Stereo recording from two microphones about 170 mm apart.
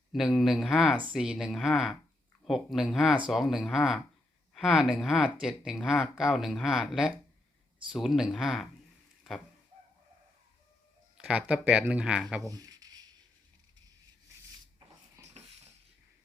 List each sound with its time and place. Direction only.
0.1 s speech: centre (ahead or behind)
11.2 s speech: 5° right (ahead or behind)
12.5 s a sound: 20° right (ahead or behind)
15.2 s wheeze: 20° right (ahead or behind)